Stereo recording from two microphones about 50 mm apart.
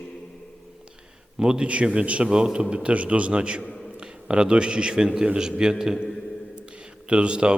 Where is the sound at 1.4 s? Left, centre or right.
Centre.